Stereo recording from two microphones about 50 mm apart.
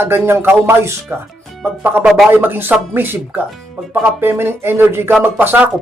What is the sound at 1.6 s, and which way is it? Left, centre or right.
Speech, right.